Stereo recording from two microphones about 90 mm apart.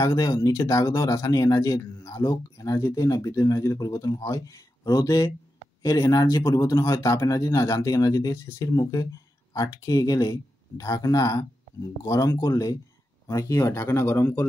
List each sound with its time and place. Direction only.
0.0 s speech: 45° left (ahead or behind); by 14.4 s 25° left (ahead or behind)